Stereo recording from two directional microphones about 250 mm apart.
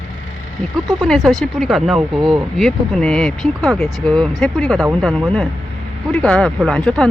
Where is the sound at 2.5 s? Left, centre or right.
Centre.